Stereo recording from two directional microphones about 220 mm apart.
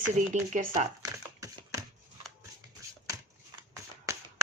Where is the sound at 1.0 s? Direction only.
15° right (ahead or behind).